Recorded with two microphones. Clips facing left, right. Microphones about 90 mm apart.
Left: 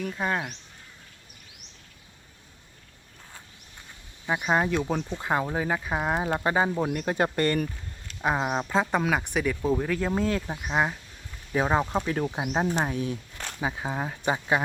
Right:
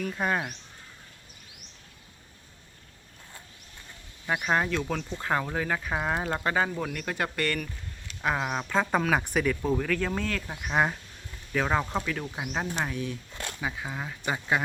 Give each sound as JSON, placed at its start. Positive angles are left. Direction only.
{"t": 0.0, "sound": "speech", "side_deg": 0}
{"t": 4.4, "sound": "speech", "side_deg": 15}
{"t": 10.7, "sound": "speech", "side_deg": 5}
{"t": 11.5, "sound": "speech", "side_deg": 20}
{"t": 12.0, "sound": "speech", "side_deg": 35}
{"t": 14.3, "sound": "speech", "side_deg": 15}